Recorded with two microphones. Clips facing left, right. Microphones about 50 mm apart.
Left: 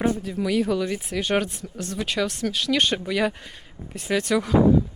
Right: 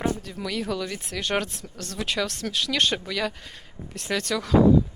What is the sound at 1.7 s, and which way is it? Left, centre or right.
Speech, centre.